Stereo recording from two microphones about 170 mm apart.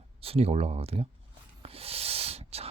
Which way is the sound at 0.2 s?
35° right (ahead or behind).